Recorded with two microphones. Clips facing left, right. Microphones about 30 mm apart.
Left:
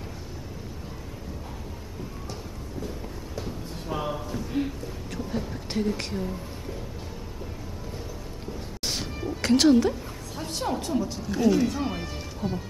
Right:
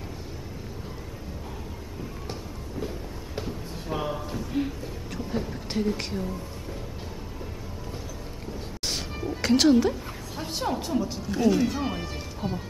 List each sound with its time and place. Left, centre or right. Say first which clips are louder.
3.4 s basketball bounce: left 1 dB; centre
4.5 s a woman's voice: even; centre
8.8 s music: even; centre
9.4 s a woman's voice: left 1 dB; centre
12.4 s speech: left 1 dB; right